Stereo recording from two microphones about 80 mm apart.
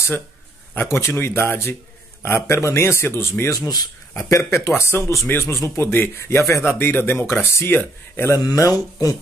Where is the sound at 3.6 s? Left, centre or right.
Left.